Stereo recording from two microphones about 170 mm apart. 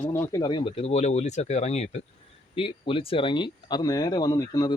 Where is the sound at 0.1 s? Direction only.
20° left (ahead or behind).